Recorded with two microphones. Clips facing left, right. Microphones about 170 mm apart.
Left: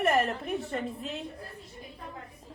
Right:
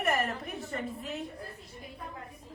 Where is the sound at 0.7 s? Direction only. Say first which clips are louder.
Left 2 dB; 30° left (ahead or behind).